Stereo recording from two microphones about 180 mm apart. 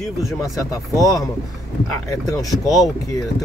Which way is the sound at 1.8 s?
20° left (ahead or behind).